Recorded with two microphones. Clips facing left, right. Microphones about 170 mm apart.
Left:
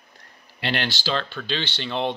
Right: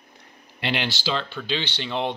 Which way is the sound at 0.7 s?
10° right (ahead or behind).